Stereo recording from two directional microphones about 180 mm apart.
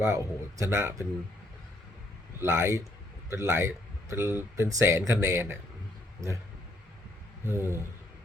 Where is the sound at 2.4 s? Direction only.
15° right (ahead or behind).